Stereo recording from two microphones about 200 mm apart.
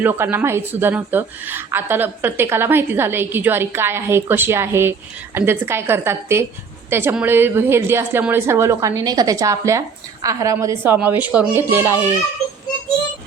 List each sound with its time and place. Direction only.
0.0 s a woman's voice: 10° right (ahead or behind)